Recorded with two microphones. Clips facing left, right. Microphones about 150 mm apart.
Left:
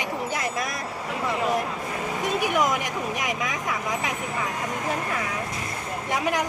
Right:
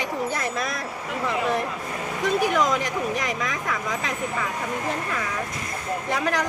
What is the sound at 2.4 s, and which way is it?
Speech, 15° left (ahead or behind).